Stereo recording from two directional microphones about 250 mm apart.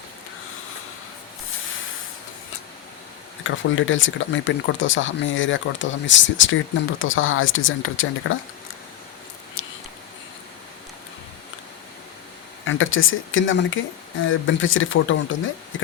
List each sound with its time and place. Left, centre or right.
3.4 s speech: left
9.6 s a sound: left
12.6 s speech: left